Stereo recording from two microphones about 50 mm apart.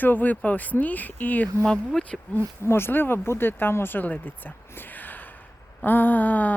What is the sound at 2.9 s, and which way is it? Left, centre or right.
A woman's voice, left.